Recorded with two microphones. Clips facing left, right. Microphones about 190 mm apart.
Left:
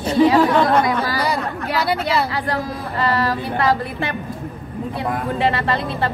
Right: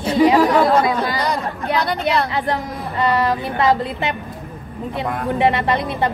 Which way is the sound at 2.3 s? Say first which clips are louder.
Right 1 dB; 20° right (ahead or behind).